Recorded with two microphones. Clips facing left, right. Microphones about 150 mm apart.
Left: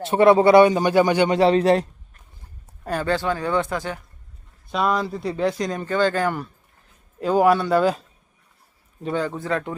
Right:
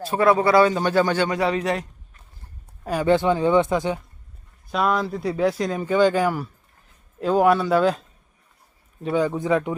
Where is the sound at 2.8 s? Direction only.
5° right (ahead or behind).